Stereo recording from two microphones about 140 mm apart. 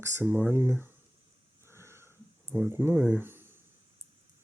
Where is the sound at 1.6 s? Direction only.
20° right (ahead or behind).